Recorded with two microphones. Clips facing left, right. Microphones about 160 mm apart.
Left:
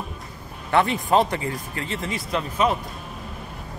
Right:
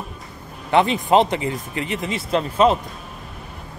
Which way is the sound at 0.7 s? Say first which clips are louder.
Right 3 dB; 20° right (ahead or behind).